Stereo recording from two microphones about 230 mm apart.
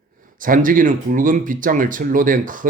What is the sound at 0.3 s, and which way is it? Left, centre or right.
Speech, right.